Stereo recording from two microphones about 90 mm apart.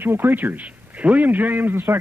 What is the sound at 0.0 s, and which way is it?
A man's voice, 25° right (ahead or behind).